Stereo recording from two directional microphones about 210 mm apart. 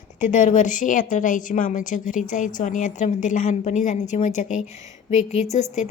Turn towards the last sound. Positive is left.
turn(degrees=35)  # may be behind; listen again after turning